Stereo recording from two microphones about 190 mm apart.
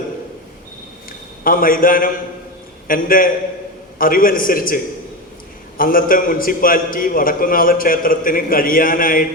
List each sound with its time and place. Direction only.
1.5 s a man's voice: 50° left (ahead or behind)